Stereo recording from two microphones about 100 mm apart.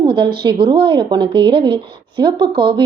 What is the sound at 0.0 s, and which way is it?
Speech, 55° right (ahead or behind).